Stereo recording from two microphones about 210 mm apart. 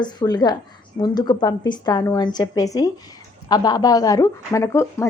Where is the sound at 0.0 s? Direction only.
20° left (ahead or behind).